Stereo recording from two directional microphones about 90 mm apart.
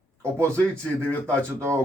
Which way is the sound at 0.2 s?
30° right (ahead or behind).